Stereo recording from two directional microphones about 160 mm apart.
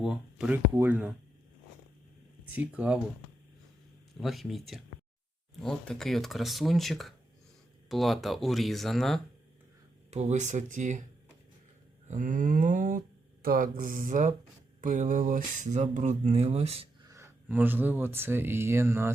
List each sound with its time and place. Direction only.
0.0 s speech: 5° right (ahead or behind)
2.6 s speech: 5° right (ahead or behind)
4.2 s speech: centre (ahead or behind)
10.1 s speech: 45° right (ahead or behind)
12.0 s speech: 55° right (ahead or behind)
17.1 s speech: 15° right (ahead or behind)